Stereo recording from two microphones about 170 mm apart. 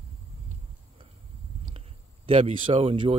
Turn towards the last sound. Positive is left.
turn(degrees=-35)  # may be behind; listen again after turning